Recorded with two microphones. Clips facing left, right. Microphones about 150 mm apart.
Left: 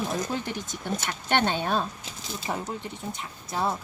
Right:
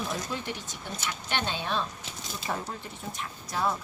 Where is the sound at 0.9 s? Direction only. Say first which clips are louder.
Left 7 dB; 55° left (ahead or behind).